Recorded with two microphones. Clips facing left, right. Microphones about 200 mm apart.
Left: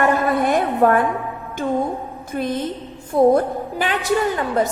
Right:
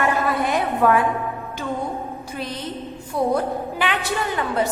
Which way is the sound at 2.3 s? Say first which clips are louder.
Left 8 dB; 50° left (ahead or behind).